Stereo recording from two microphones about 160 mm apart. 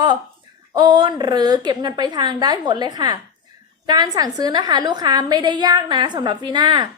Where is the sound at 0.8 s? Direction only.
30° right (ahead or behind).